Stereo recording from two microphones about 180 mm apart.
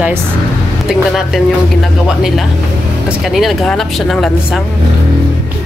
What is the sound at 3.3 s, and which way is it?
Speech, centre (ahead or behind).